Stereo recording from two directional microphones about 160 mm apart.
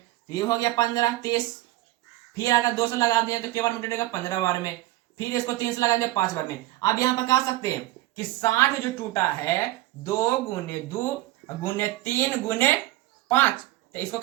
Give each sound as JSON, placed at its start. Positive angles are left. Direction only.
{"t": 0.3, "sound": "a child's voice", "side_deg": 25}